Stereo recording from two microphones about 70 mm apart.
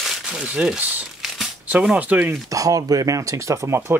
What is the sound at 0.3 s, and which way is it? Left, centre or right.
Speech, centre.